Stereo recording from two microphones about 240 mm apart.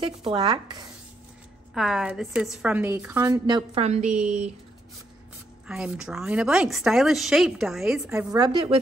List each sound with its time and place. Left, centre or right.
0.0 s speech: right
1.7 s a woman's voice: centre
3.4 s speech: right
4.1 s a woman's voice: centre
5.7 s a woman's voice: centre
8.1 s a woman's voice: centre